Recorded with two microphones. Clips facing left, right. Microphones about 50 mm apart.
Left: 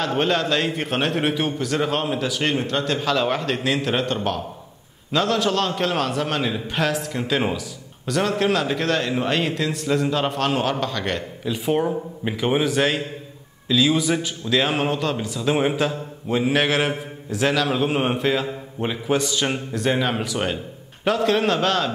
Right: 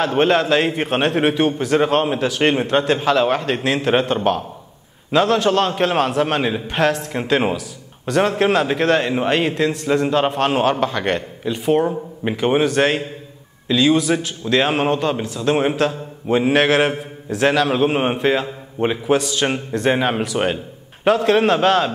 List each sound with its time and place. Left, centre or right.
0.0 s a man's voice: centre
1.6 s a man's voice: centre
1.9 s a man's voice: centre
2.4 s a man's voice: right
3.0 s a man's voice: centre
6.7 s a man's voice: centre
19.8 s a man's voice: centre
21.0 s a man's voice: centre